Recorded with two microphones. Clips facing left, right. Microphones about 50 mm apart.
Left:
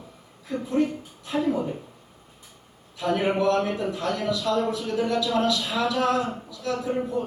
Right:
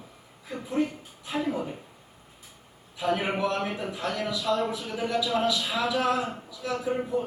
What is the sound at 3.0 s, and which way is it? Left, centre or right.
A man's voice, centre.